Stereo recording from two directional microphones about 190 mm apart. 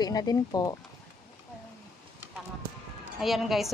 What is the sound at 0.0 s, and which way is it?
Speech, 20° left (ahead or behind).